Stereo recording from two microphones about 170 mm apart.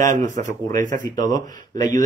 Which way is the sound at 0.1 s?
50° right (ahead or behind).